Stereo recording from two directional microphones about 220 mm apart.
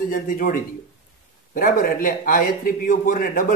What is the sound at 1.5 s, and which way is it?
A man's voice, 40° left (ahead or behind).